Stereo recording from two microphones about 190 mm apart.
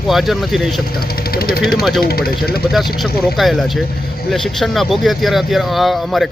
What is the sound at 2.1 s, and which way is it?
Speech, 55° left (ahead or behind).